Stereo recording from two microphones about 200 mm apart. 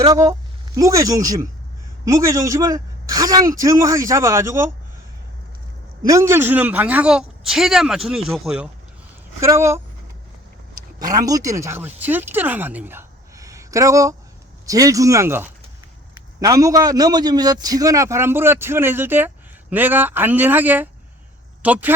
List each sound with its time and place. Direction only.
0.0 s a man's voice: 20° right (ahead or behind)
6.1 s a man's voice: 15° right (ahead or behind)
11.0 s a man's voice: 20° right (ahead or behind)